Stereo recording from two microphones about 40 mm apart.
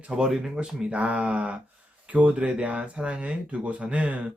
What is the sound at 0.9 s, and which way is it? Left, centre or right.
Speech, right.